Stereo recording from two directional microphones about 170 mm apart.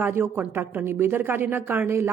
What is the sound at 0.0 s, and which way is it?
A woman's voice, 15° right (ahead or behind).